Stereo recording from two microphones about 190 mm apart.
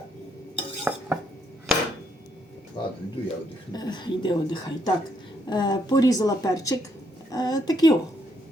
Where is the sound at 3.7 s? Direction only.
20° left (ahead or behind).